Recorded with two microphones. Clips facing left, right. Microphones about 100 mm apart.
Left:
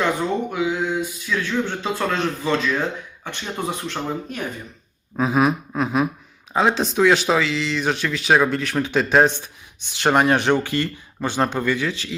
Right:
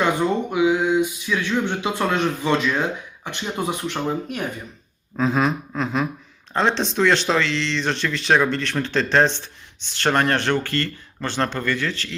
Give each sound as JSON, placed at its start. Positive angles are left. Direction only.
{"t": 0.0, "sound": "speech", "side_deg": -15}
{"t": 5.1, "sound": "speech", "side_deg": 10}